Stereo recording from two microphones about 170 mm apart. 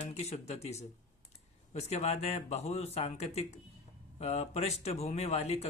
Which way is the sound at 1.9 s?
40° left (ahead or behind).